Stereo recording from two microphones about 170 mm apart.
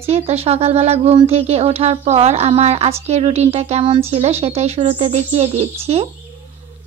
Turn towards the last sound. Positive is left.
turn(degrees=-35)  # may be behind; listen again after turning